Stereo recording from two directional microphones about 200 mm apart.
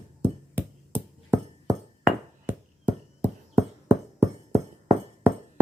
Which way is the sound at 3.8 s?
15° right (ahead or behind).